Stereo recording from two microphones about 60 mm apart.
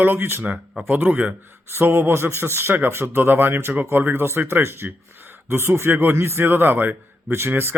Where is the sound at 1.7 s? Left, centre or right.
Right.